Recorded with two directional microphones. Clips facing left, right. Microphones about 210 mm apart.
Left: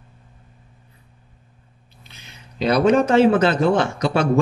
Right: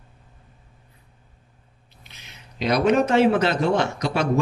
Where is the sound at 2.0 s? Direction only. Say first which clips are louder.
Left 2 dB; 30° left (ahead or behind).